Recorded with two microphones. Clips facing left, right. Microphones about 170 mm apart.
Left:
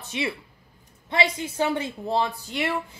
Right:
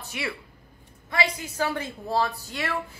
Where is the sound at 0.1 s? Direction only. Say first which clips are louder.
Left 4 dB; 20° left (ahead or behind).